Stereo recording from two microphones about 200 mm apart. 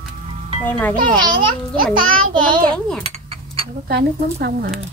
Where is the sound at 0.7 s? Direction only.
10° left (ahead or behind).